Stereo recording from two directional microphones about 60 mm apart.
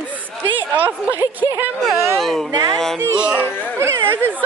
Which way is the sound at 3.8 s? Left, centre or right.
Right.